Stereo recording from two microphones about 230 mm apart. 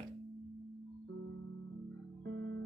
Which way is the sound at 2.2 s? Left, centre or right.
Right.